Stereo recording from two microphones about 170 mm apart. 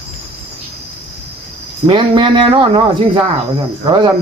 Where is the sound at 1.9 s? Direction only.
30° right (ahead or behind).